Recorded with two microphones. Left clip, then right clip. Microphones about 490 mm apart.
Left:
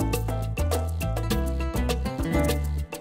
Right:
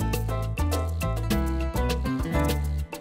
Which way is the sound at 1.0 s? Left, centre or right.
Left.